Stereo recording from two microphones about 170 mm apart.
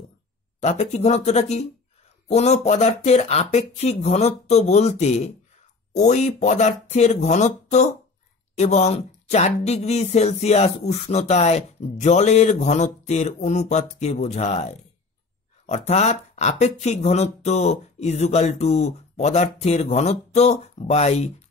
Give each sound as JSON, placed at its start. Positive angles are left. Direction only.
{"t": 0.6, "sound": "speech", "side_deg": 40}